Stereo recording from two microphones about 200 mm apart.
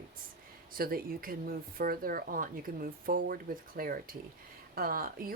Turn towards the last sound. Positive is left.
turn(degrees=-45)  # may be behind; listen again after turning